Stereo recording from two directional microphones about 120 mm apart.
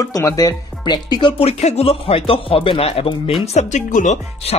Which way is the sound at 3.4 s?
75° left (ahead or behind).